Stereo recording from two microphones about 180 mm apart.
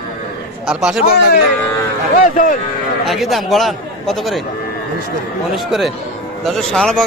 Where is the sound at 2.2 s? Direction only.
45° left (ahead or behind).